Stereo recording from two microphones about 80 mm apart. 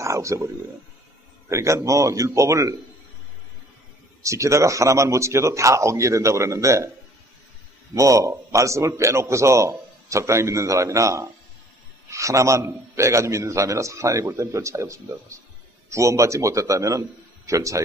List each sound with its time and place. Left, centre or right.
0.0 s a sound: right
1.5 s a man's voice: right
4.2 s a man's voice: right
7.9 s a man's voice: right